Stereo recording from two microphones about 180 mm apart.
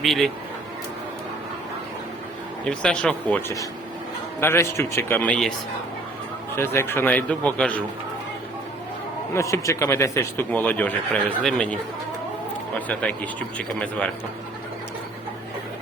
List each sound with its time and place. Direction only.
0.0 s speech: centre (ahead or behind)
2.6 s speech: 5° left (ahead or behind)
6.6 s speech: 15° left (ahead or behind)
9.3 s speech: 15° left (ahead or behind)
12.9 s speech: 10° left (ahead or behind)